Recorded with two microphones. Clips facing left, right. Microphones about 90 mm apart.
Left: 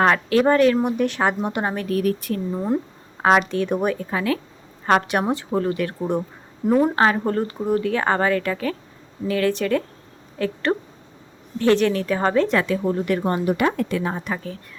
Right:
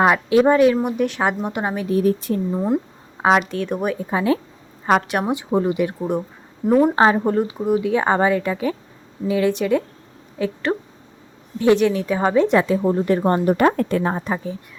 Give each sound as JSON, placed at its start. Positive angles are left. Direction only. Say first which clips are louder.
{"t": 0.0, "sound": "speech", "louder": "right 2 dB", "side_deg": -10}
{"t": 1.9, "sound": "speech", "louder": "right 6 dB", "side_deg": -25}
{"t": 2.5, "sound": "speech", "louder": "even", "side_deg": -5}
{"t": 3.9, "sound": "speech", "louder": "right 4 dB", "side_deg": -15}
{"t": 4.9, "sound": "speech", "louder": "right 1 dB", "side_deg": 0}
{"t": 5.3, "sound": "speech", "louder": "right 2 dB", "side_deg": -15}
{"t": 6.0, "sound": "speech", "louder": "right 1 dB", "side_deg": -5}
{"t": 6.9, "sound": "speech", "louder": "right 3 dB", "side_deg": -20}
{"t": 7.3, "sound": "a woman's voice", "louder": "right 3 dB", "side_deg": -5}
{"t": 12.5, "sound": "speech", "louder": "right 4 dB", "side_deg": -20}
{"t": 14.3, "sound": "speech", "louder": "right 4 dB", "side_deg": -20}